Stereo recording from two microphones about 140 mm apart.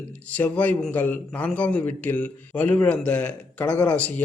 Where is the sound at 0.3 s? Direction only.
10° left (ahead or behind).